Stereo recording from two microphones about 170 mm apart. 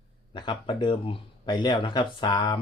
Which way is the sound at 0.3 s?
30° left (ahead or behind).